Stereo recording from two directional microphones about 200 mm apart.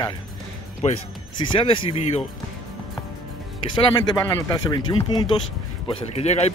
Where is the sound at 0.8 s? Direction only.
35° left (ahead or behind).